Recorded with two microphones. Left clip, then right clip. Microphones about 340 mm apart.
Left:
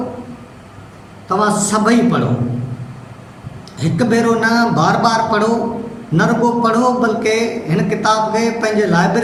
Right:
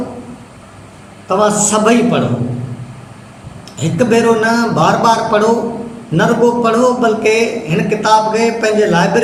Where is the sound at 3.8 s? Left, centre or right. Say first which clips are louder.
Right 4 dB; centre.